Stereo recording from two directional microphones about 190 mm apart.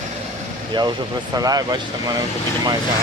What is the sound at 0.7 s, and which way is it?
Speech, 20° right (ahead or behind).